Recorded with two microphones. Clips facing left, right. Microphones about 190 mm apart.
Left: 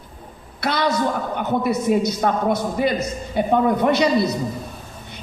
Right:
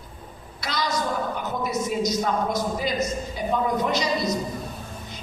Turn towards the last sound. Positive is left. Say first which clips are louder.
# left 7 dB
turn(degrees=60)  # may be behind; listen again after turning